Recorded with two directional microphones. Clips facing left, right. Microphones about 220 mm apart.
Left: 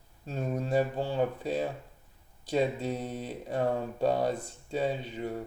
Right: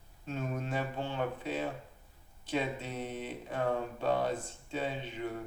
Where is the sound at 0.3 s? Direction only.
35° left (ahead or behind).